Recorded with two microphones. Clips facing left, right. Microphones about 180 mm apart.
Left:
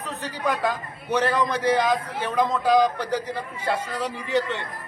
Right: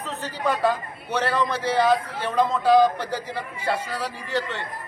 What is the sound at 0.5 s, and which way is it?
A man's voice, 15° left (ahead or behind).